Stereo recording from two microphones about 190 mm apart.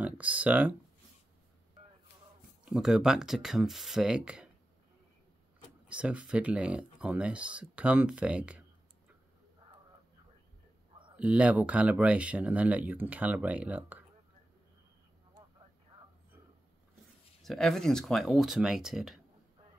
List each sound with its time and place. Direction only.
0.0 s speech: 5° right (ahead or behind)
2.6 s speech: 5° right (ahead or behind)
5.9 s speech: 5° right (ahead or behind)
11.1 s speech: 5° right (ahead or behind)
17.4 s speech: centre (ahead or behind)